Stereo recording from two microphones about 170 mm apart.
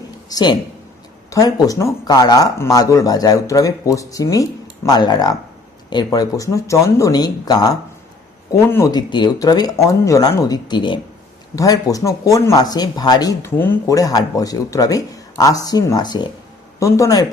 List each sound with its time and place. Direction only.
0.3 s speech: 25° left (ahead or behind)